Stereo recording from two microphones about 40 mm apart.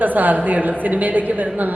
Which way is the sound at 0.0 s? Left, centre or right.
Right.